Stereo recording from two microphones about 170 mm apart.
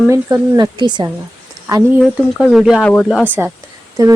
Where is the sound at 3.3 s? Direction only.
10° right (ahead or behind).